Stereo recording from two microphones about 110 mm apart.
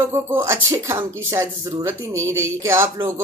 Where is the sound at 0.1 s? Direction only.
25° right (ahead or behind).